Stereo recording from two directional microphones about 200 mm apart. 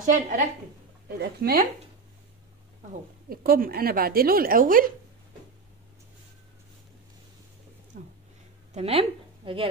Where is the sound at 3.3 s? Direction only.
45° right (ahead or behind).